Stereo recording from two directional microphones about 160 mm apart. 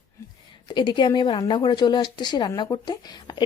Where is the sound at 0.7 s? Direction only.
30° left (ahead or behind).